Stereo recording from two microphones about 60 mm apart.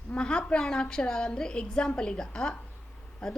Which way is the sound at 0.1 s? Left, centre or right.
Centre.